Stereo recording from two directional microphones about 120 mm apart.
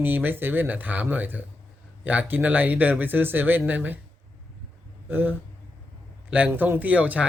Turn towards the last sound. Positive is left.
turn(degrees=-10)  # may be behind; listen again after turning